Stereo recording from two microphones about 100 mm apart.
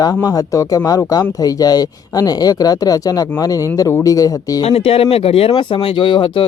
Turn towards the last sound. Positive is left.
turn(degrees=55)  # may be behind; listen again after turning